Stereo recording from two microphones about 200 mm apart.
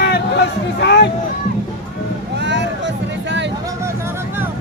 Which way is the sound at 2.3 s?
60° right (ahead or behind).